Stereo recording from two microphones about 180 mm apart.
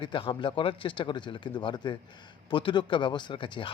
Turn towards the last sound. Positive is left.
turn(degrees=25)  # may be behind; listen again after turning